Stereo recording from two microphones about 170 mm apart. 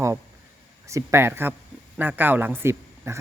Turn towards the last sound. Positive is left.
turn(degrees=-15)  # may be behind; listen again after turning